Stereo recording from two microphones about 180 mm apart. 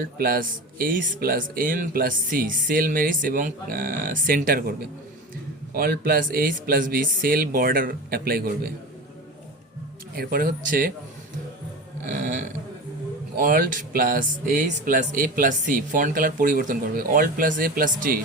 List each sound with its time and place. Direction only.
0.0 s speech: 55° right (ahead or behind)
5.7 s speech: 55° right (ahead or behind)
10.2 s speech: 55° right (ahead or behind)
12.0 s speech: 45° right (ahead or behind)